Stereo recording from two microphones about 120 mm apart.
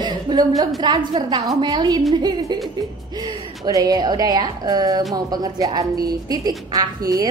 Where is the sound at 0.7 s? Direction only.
35° right (ahead or behind).